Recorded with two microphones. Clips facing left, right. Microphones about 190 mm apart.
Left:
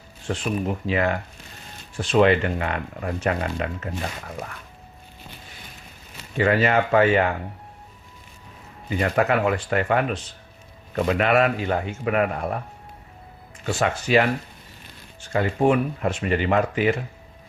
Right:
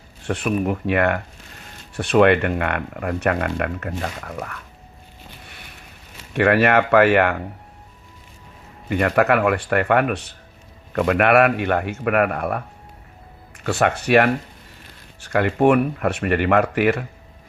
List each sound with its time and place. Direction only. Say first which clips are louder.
0.3 s speech: right 4 dB; 60° right (ahead or behind)
6.3 s speech: right 3 dB; 65° right (ahead or behind)
8.9 s speech: right 4 dB; 60° right (ahead or behind)
13.7 s speech: right 4 dB; 60° right (ahead or behind)